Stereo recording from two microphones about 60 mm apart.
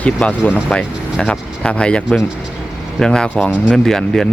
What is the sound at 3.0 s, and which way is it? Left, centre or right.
Speech, centre.